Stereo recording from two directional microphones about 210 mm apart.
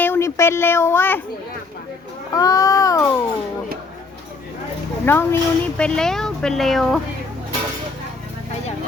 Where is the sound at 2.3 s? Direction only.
15° left (ahead or behind).